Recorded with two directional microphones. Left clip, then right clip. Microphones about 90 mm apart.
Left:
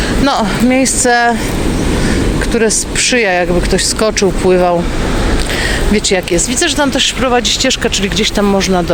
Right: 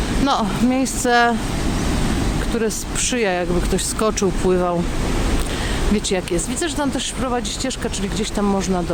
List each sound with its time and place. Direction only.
0.3 s a woman's voice: 25° right (ahead or behind)
2.6 s a woman's voice: 30° right (ahead or behind)
5.9 s speech: 40° right (ahead or behind)
7.2 s speech: 10° right (ahead or behind)